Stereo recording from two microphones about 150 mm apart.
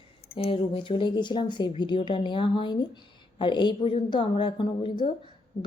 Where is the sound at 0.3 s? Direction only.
35° left (ahead or behind).